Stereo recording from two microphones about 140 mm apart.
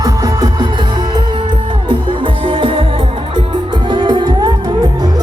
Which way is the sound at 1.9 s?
35° right (ahead or behind).